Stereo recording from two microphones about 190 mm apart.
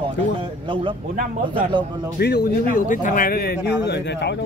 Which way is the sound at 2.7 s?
40° left (ahead or behind).